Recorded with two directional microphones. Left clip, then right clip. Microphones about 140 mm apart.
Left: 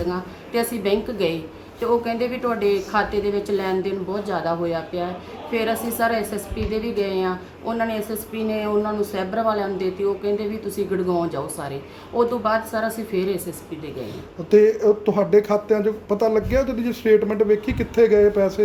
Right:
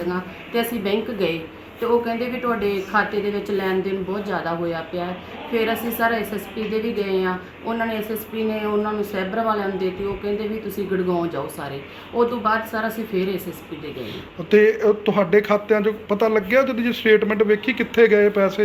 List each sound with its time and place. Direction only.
0.0 s a woman's voice: 20° left (ahead or behind)
14.5 s speech: 15° left (ahead or behind)